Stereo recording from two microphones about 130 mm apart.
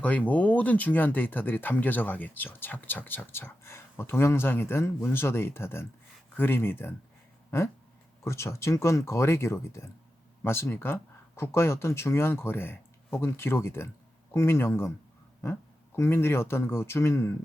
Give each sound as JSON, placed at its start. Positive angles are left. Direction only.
{"t": 0.0, "sound": "speech", "side_deg": 10}
{"t": 8.2, "sound": "speech", "side_deg": 20}